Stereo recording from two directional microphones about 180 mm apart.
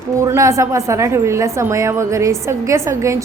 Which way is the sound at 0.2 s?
15° right (ahead or behind).